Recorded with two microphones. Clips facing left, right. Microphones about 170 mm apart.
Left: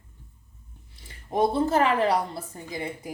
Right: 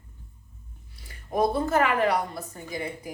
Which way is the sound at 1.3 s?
30° left (ahead or behind).